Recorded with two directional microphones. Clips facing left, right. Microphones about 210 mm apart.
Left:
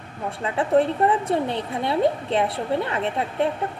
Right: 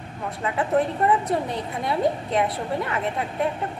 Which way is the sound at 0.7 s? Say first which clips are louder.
Left 3 dB; 30° left (ahead or behind).